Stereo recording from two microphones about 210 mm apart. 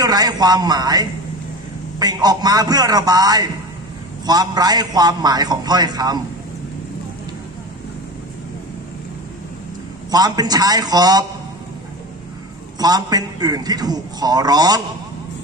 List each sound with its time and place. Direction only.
0.0 s a man's voice: 20° right (ahead or behind)
10.1 s a man's voice: 20° right (ahead or behind)
12.7 s a man's voice: 20° right (ahead or behind)